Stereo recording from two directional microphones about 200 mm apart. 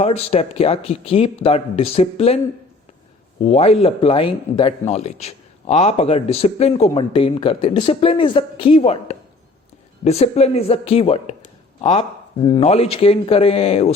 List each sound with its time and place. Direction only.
0.0 s speech: 30° left (ahead or behind)
3.4 s speech: 30° left (ahead or behind)